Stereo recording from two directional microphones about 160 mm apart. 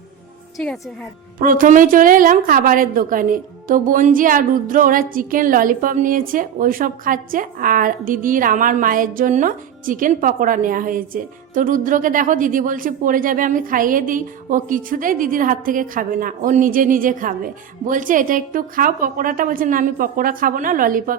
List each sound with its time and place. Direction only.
1.4 s a woman's voice: 60° right (ahead or behind)